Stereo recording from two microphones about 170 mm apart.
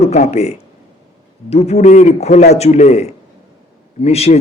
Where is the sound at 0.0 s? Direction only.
40° left (ahead or behind).